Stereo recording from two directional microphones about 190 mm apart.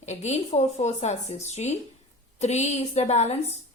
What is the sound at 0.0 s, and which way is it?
Speech, 35° left (ahead or behind).